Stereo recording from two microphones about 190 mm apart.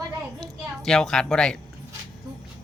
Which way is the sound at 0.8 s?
Centre (ahead or behind).